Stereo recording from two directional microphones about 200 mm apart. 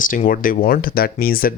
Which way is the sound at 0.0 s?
40° left (ahead or behind).